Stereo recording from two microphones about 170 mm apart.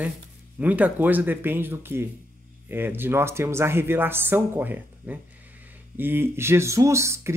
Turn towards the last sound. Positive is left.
turn(degrees=-15)  # may be behind; listen again after turning